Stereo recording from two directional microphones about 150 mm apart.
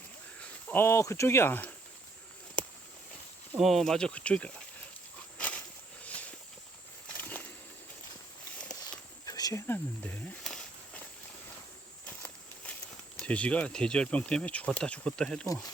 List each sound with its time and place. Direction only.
0.7 s speech: 15° left (ahead or behind)
3.6 s speech: centre (ahead or behind)
5.4 s walk: 10° left (ahead or behind)
7.2 s a sound: 10° left (ahead or behind)
9.2 s speech: 25° left (ahead or behind)
10.4 s snake: 5° left (ahead or behind)
12.0 s a sound: 10° left (ahead or behind)
13.2 s speech: 10° left (ahead or behind)